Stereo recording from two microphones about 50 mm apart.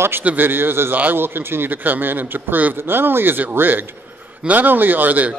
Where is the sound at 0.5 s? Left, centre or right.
Right.